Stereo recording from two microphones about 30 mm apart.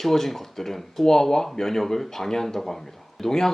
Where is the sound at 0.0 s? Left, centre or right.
Centre.